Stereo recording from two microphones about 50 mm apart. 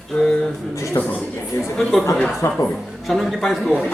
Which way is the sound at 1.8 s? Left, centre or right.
Centre.